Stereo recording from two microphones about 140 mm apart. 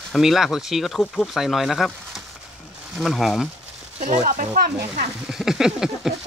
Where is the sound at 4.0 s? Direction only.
60° right (ahead or behind).